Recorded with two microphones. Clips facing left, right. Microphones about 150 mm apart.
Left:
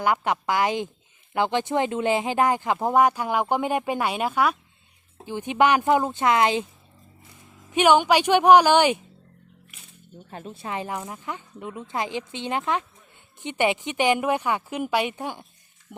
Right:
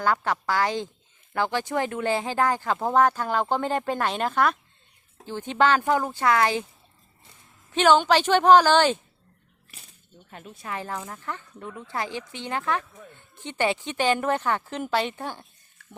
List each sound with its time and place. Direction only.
0.0 s speech: 15° left (ahead or behind)
7.7 s speech: 10° left (ahead or behind)
9.7 s music: 35° right (ahead or behind)
10.3 s speech: 30° left (ahead or behind); by 15.4 s 15° left (ahead or behind)